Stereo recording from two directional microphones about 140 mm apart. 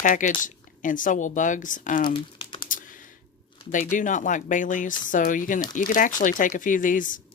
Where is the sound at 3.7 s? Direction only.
65° left (ahead or behind).